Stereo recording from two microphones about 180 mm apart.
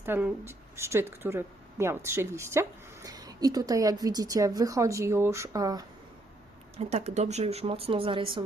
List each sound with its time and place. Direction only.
0.0 s speech: 10° right (ahead or behind)
6.7 s speech: 35° right (ahead or behind)